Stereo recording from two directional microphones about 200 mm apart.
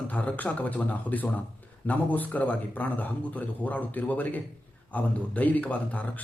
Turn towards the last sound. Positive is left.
turn(degrees=10)  # may be behind; listen again after turning